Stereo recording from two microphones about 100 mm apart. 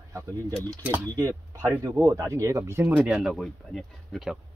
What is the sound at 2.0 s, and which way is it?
Speech, 30° right (ahead or behind).